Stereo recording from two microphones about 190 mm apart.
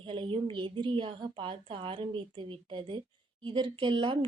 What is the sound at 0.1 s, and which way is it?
Speech, 25° right (ahead or behind).